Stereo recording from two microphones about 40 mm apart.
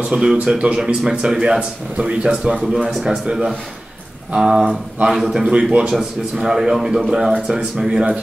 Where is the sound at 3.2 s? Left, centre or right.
Centre.